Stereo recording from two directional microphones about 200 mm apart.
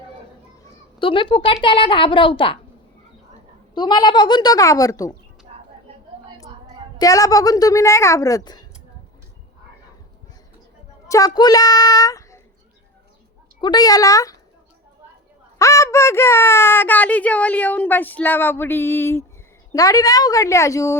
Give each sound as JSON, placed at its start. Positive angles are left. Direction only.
{"t": 0.9, "sound": "a child's voice", "side_deg": 25}
{"t": 3.8, "sound": "a child's voice", "side_deg": 20}
{"t": 5.5, "sound": "a sound", "side_deg": -35}
{"t": 7.0, "sound": "speech", "side_deg": 15}
{"t": 11.1, "sound": "a child's voice", "side_deg": 20}
{"t": 13.6, "sound": "speech", "side_deg": 20}
{"t": 15.5, "sound": "speech", "side_deg": 15}